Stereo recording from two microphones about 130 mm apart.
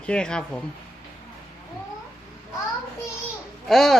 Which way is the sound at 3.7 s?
Centre (ahead or behind).